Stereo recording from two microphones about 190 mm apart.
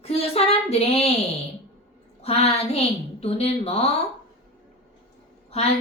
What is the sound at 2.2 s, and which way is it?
Speech, 30° left (ahead or behind).